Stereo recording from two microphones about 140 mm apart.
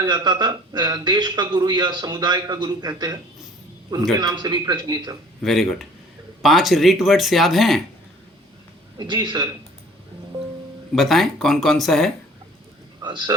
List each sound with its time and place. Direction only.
0.0 s a man's voice: 30° right (ahead or behind)
4.2 s a man's voice: 30° right (ahead or behind)
5.4 s speech: centre (ahead or behind)
9.0 s a man's voice: 30° right (ahead or behind)
10.9 s speech: centre (ahead or behind)
13.0 s a sound: 30° right (ahead or behind)